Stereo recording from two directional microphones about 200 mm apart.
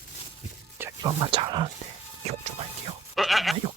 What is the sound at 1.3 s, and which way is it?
Speech, 25° right (ahead or behind).